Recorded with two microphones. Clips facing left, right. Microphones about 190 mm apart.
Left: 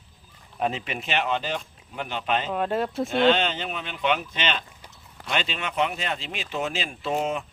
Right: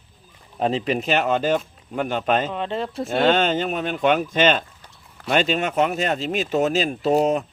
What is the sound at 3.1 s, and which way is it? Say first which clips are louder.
Speech: right 3 dB; 45° right (ahead or behind).